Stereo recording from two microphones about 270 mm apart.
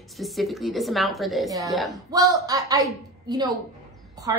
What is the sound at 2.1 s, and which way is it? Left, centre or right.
Speech, centre.